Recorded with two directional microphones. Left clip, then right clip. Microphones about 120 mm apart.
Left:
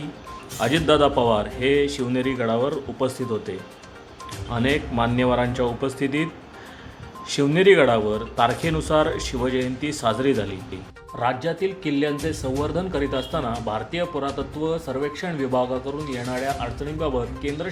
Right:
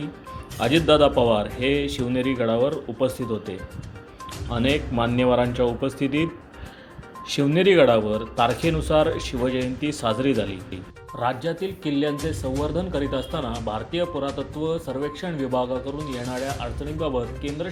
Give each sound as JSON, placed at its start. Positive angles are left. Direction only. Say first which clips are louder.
{"t": 0.6, "sound": "speech", "louder": "right 1 dB", "side_deg": -25}
{"t": 4.4, "sound": "speech", "louder": "even", "side_deg": -30}
{"t": 7.3, "sound": "speech", "louder": "left 3 dB", "side_deg": -25}
{"t": 11.2, "sound": "speech", "louder": "left 2 dB", "side_deg": -15}